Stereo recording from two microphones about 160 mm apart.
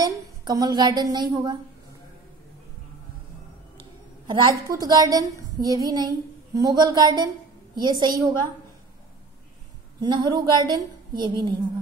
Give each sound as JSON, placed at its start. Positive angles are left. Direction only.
{"t": 0.0, "sound": "a woman's voice", "side_deg": -25}
{"t": 4.3, "sound": "a woman's voice", "side_deg": -30}
{"t": 9.9, "sound": "a woman's voice", "side_deg": -25}